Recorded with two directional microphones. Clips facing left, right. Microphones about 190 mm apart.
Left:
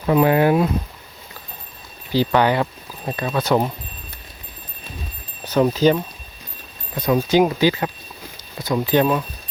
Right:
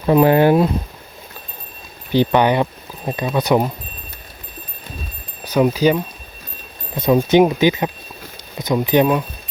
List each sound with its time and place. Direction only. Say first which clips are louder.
0.1 s speech: right 3 dB; 30° right (ahead or behind)
2.1 s speech: right 3 dB; 20° right (ahead or behind)
5.5 s speech: right 1 dB; 10° right (ahead or behind)
6.9 s speech: right 4 dB; 25° right (ahead or behind)